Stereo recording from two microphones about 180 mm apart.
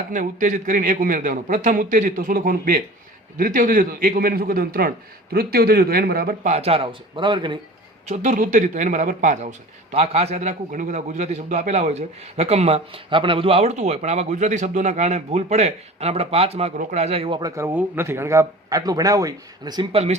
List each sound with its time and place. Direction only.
0.1 s a man's voice: 45° right (ahead or behind)
6.5 s a man's voice: 35° right (ahead or behind)
8.0 s a man's voice: 40° right (ahead or behind)